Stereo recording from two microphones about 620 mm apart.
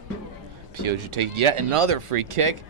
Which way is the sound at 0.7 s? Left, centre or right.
Right.